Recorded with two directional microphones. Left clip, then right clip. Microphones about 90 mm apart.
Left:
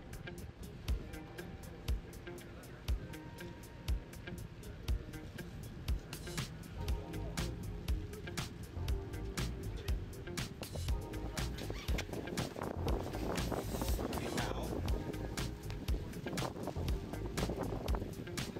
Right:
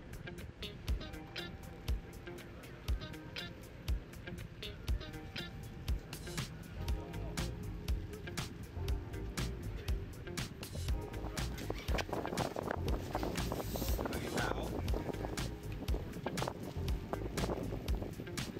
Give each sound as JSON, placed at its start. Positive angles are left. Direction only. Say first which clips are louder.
{"t": 5.4, "sound": "music", "louder": "right 2 dB", "side_deg": 0}